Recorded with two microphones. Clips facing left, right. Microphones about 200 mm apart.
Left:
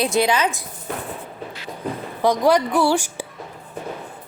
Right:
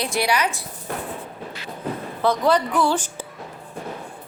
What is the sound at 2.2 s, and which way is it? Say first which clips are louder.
A woman's voice: left 2 dB; 10° left (ahead or behind).